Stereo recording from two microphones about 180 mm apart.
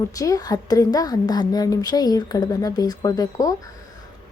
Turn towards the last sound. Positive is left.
turn(degrees=20)  # may be behind; listen again after turning